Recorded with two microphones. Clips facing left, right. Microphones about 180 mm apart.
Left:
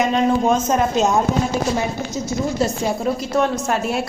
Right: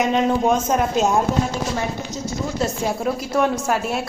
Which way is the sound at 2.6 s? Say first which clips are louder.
Left 2 dB; 5° right (ahead or behind).